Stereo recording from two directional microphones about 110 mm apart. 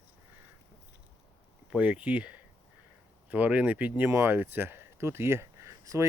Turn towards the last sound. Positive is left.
turn(degrees=-25)  # may be behind; listen again after turning